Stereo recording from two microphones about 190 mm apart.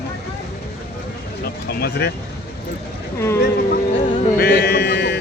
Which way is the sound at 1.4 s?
55° left (ahead or behind).